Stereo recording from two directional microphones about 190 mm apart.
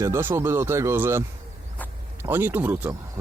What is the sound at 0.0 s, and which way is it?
Speech, 15° right (ahead or behind).